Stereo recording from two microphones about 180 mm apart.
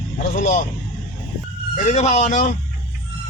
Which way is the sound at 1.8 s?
40° left (ahead or behind).